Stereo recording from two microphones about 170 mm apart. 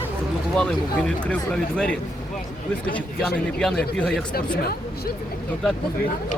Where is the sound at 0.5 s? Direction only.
5° left (ahead or behind).